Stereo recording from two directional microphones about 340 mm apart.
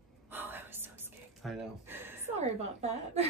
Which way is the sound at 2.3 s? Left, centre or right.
Centre.